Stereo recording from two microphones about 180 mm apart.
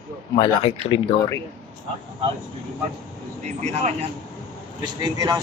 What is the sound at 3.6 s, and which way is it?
Speech, 40° right (ahead or behind).